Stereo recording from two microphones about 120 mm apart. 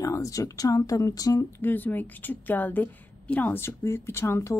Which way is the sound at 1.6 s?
15° left (ahead or behind).